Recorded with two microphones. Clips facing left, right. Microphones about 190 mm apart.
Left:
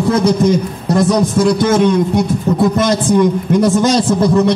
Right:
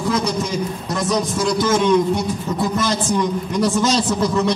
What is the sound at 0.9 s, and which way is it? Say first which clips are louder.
A man's voice: left 9 dB; 55° left (ahead or behind).